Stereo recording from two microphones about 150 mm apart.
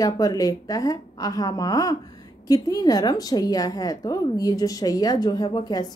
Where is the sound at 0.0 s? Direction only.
25° left (ahead or behind).